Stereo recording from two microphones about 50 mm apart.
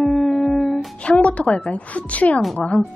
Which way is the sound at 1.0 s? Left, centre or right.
Left.